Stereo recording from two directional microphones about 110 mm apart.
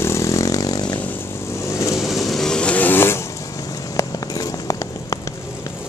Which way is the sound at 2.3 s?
5° left (ahead or behind).